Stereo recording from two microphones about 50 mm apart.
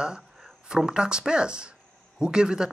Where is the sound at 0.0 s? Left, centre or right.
Centre.